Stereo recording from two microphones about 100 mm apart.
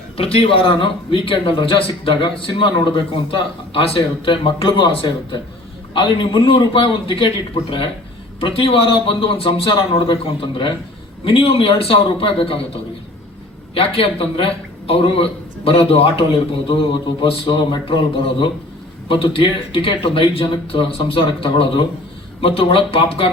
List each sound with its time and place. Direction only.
0.2 s a man's voice: 70° left (ahead or behind)
6.1 s a man's voice: 60° left (ahead or behind)